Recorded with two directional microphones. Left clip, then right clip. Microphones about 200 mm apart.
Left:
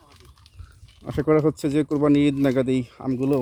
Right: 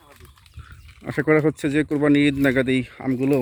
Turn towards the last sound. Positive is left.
turn(degrees=-15)  # may be behind; listen again after turning